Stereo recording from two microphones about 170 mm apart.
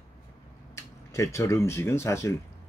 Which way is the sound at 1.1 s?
15° left (ahead or behind).